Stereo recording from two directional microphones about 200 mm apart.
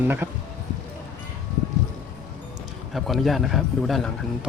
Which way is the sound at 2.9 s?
Centre (ahead or behind).